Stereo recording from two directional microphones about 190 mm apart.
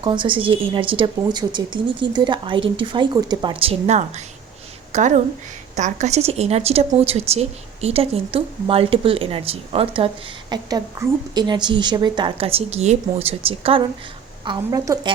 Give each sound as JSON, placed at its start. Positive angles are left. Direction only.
{"t": 0.0, "sound": "a woman's voice", "side_deg": -25}